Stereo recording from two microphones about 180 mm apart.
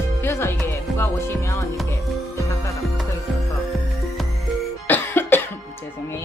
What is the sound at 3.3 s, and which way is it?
Music, centre (ahead or behind).